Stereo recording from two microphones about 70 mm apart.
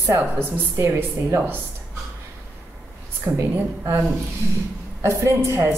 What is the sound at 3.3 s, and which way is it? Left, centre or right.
Speech, right.